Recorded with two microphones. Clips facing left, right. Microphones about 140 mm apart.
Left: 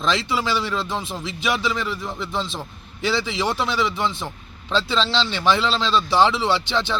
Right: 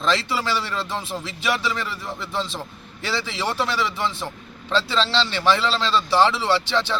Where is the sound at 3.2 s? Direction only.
15° left (ahead or behind).